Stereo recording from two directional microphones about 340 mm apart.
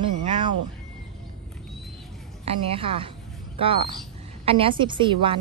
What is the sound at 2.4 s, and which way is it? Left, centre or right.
A woman's voice, centre.